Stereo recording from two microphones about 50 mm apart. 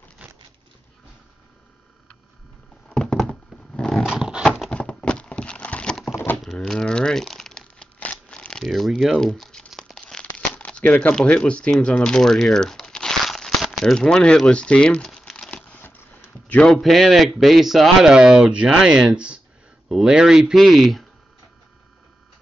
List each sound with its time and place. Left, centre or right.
0.2 s a sound: right
2.9 s a sound: centre
4.0 s dog: centre
4.6 s a sound: left
6.6 s crumpling: centre
8.0 s crumpling: left
8.6 s crumpling: centre
10.7 s speech: left
13.2 s tearing: centre
13.9 s speech: centre
15.5 s a sound: left
16.6 s a man's voice: centre
18.1 s speech: centre